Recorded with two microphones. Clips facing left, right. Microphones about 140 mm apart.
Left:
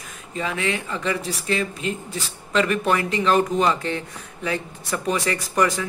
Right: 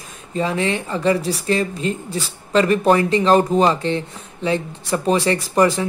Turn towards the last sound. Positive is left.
turn(degrees=-30)  # may be behind; listen again after turning